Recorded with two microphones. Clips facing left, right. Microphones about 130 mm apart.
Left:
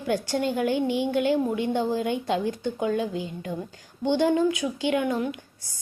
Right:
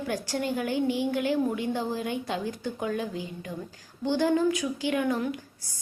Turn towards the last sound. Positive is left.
turn(degrees=25)  # may be behind; listen again after turning